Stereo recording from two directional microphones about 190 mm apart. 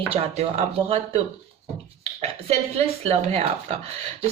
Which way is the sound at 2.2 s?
30° right (ahead or behind).